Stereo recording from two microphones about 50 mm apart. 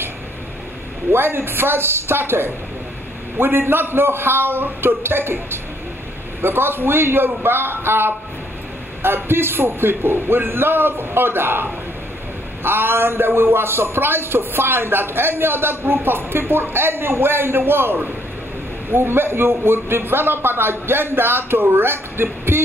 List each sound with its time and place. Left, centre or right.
1.1 s a man's voice: right